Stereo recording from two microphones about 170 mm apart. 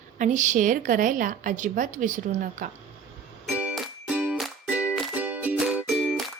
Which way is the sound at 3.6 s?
5° right (ahead or behind).